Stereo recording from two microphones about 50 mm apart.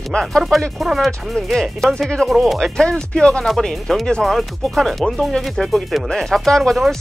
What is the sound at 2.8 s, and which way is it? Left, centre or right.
Speech, centre.